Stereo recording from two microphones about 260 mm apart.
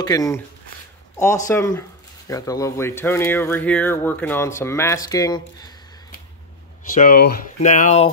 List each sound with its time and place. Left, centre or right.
0.0 s speech: centre
1.5 s speech: centre
6.9 s speech: left